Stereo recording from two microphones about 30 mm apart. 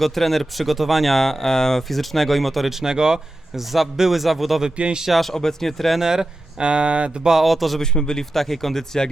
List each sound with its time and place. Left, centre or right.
0.0 s speech: centre
1.1 s speech: centre
2.8 s speech: right
3.5 s a man's voice: centre
4.8 s speech: right
5.2 s speech: centre
6.0 s speech: centre
6.6 s speech: right
7.4 s speech: centre
7.8 s a man's voice: left
8.2 s speech: centre